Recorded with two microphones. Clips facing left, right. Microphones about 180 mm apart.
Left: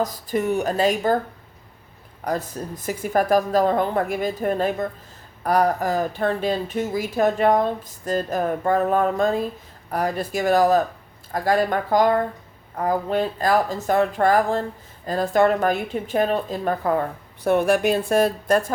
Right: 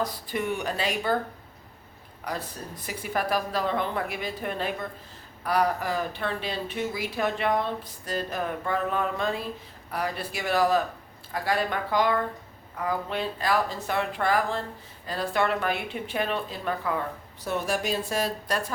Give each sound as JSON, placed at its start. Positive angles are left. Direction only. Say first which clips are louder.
{"t": 0.0, "sound": "speech", "louder": "left 6 dB", "side_deg": 45}
{"t": 2.2, "sound": "speech", "louder": "left 8 dB", "side_deg": 45}